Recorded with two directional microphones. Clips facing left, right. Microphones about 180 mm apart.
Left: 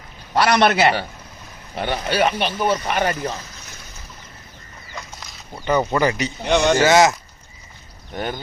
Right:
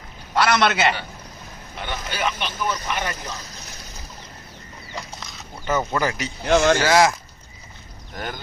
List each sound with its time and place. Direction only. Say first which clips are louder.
0.3 s a man's voice: left 3 dB; 30° left (ahead or behind)
1.8 s speech: left 7 dB; 55° left (ahead or behind)
6.0 s speech: left 5 dB; centre (ahead or behind)
8.1 s speech: left 5 dB; 25° left (ahead or behind)